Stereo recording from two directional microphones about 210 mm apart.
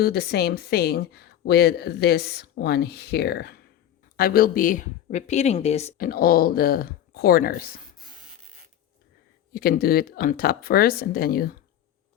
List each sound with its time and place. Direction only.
0.0 s speech: 50° left (ahead or behind); by 5.9 s 30° left (ahead or behind)
6.0 s speech: 45° left (ahead or behind)
9.5 s speech: 45° left (ahead or behind)